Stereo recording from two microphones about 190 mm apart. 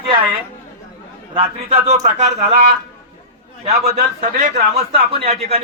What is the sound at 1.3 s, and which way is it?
A man's voice, 30° right (ahead or behind).